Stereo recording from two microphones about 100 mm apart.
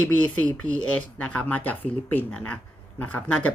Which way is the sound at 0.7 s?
15° left (ahead or behind).